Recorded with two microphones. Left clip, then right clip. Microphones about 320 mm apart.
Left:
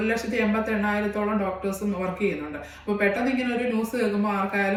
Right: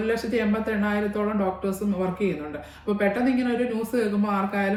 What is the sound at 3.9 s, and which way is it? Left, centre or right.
Speech, centre.